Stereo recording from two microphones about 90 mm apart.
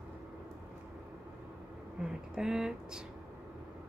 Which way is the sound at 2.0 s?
5° right (ahead or behind).